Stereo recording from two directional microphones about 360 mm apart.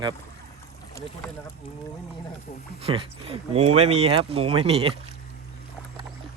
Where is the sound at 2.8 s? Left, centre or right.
Centre.